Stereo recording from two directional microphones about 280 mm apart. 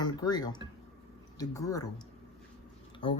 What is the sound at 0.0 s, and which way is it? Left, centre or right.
Speech, centre.